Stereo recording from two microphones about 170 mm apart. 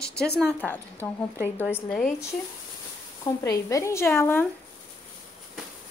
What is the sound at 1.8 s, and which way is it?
Speech, 10° left (ahead or behind).